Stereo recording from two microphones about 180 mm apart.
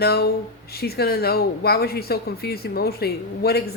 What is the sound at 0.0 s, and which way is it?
A woman's voice, 65° left (ahead or behind).